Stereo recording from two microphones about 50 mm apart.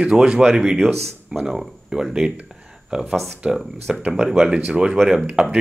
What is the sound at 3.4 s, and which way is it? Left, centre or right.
Speech, centre.